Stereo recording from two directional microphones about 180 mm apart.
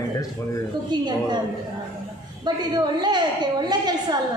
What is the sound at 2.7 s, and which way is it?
A woman's voice, 25° right (ahead or behind).